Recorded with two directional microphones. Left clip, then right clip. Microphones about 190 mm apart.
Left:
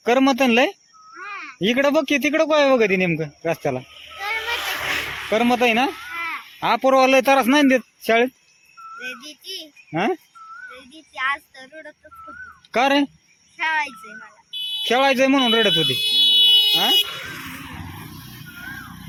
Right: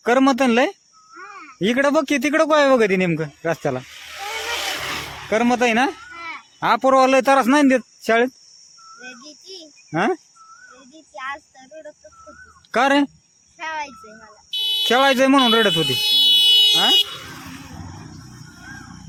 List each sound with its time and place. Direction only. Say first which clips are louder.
0.0 s speech: right 1 dB; 5° right (ahead or behind)
4.2 s a sound: left 2 dB; centre (ahead or behind)
4.7 s a sound: left 3 dB; 55° right (ahead or behind)
5.3 s speech: even; centre (ahead or behind)
9.0 s a child's voice: left 5 dB; 20° left (ahead or behind)
9.9 s speech: right 2 dB; 10° right (ahead or behind)
10.9 s child singing: left 7 dB; 20° right (ahead or behind)
11.5 s a child's voice: even; 15° right (ahead or behind)
14.5 s buzzer: right 6 dB; 30° right (ahead or behind)
14.8 s speech: right 1 dB; 15° right (ahead or behind)
15.4 s speech: right 1 dB; centre (ahead or behind)
16.0 s a sound: right 2 dB; 35° right (ahead or behind)
17.7 s a sound: left 3 dB; centre (ahead or behind)